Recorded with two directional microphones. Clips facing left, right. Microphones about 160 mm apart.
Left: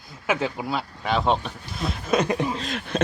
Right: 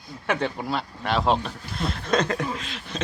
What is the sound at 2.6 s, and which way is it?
Speech, 50° left (ahead or behind).